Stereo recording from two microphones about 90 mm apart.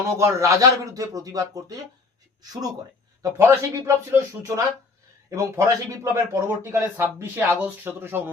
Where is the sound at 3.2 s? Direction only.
35° right (ahead or behind).